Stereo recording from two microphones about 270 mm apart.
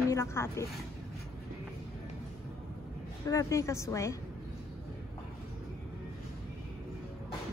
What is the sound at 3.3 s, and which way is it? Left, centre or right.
Speech, centre.